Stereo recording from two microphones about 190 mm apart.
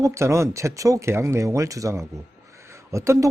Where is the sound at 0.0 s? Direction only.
15° right (ahead or behind).